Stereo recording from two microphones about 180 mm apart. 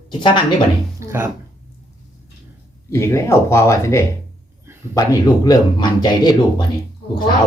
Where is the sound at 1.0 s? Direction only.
15° right (ahead or behind).